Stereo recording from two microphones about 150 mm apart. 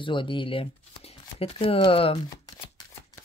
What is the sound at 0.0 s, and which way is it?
Speech, 35° left (ahead or behind).